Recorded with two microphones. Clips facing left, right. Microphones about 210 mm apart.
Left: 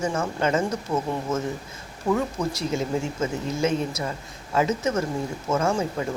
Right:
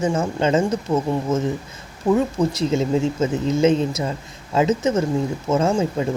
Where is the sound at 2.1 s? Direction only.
20° right (ahead or behind).